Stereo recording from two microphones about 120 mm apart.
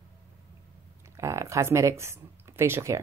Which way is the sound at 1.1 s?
25° right (ahead or behind).